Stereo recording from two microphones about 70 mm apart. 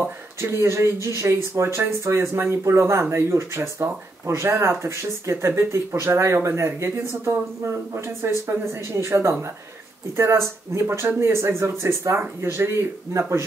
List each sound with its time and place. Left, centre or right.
0.0 s speech: right